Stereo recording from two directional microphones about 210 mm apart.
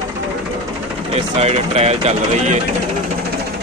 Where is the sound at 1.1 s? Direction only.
30° right (ahead or behind).